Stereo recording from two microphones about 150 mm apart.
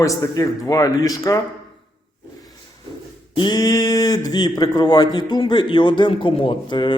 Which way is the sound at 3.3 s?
30° left (ahead or behind).